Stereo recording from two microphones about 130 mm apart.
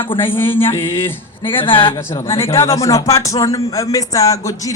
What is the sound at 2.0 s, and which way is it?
Speech, 20° left (ahead or behind).